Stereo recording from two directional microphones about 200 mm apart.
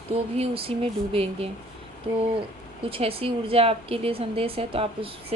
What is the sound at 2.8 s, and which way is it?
A woman's voice, 25° right (ahead or behind).